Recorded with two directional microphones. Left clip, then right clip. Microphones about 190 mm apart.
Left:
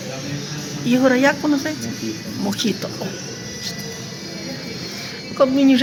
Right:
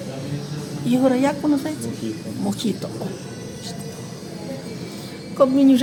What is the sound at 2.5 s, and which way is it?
Speech, 10° right (ahead or behind).